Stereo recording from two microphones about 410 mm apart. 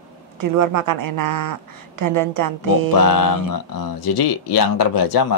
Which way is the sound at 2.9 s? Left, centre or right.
Left.